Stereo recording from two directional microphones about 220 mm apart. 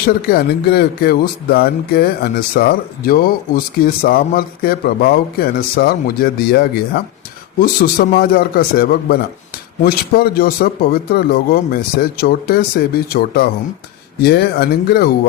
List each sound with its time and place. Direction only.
0.1 s speech: 40° left (ahead or behind)